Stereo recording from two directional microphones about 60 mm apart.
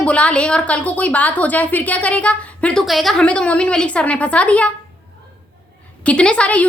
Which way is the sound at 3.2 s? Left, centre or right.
Centre.